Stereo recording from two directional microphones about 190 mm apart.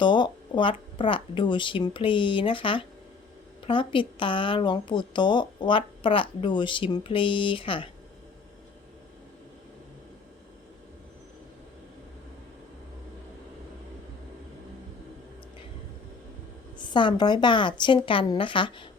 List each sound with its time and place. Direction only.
0.0 s speech: 25° left (ahead or behind)
16.8 s speech: 25° left (ahead or behind)